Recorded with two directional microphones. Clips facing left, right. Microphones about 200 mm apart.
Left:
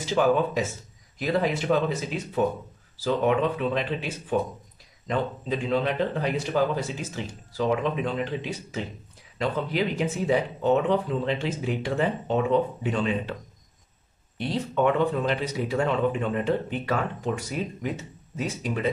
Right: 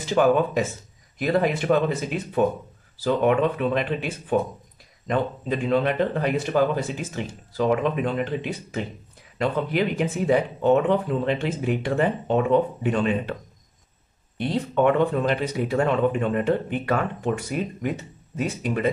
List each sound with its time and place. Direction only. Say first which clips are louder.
0.0 s speech: right 3 dB; 55° right (ahead or behind)
13.3 s speech: right 3 dB; 45° right (ahead or behind)
14.4 s speech: right 3 dB; 55° right (ahead or behind)